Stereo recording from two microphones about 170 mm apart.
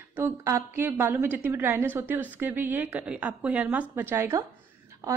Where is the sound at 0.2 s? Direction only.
15° right (ahead or behind).